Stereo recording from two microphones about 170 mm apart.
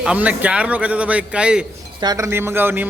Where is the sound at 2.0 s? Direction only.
25° right (ahead or behind).